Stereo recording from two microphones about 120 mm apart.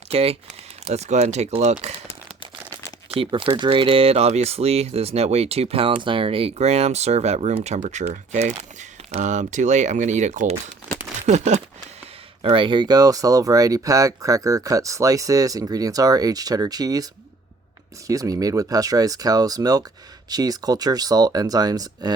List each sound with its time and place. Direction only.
0.1 s speech: 55° right (ahead or behind)
0.9 s speech: 70° right (ahead or behind)
3.1 s speech: 50° right (ahead or behind); by 10.5 s 80° right
11.3 s speech: 70° right (ahead or behind)
12.4 s speech: 45° right (ahead or behind); by 17.1 s 30° right (ahead or behind)
18.1 s speech: 30° right (ahead or behind)